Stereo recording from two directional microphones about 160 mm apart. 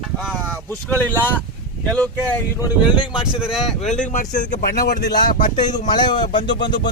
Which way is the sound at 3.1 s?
5° right (ahead or behind).